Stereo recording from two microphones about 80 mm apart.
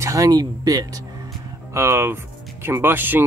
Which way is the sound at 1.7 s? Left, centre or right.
Right.